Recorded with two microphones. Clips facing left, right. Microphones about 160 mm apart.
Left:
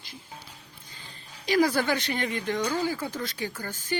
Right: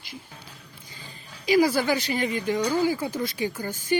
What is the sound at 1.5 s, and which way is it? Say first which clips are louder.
Speech: right 3 dB; 5° right (ahead or behind).